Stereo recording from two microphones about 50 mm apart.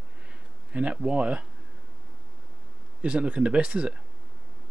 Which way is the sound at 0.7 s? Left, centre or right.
Right.